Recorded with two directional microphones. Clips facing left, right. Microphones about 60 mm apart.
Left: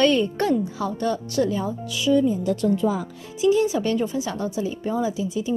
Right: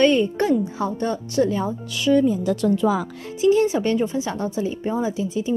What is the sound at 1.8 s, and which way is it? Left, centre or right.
Speech, right.